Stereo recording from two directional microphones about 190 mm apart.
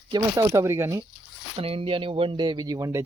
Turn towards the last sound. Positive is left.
turn(degrees=-15)  # may be behind; listen again after turning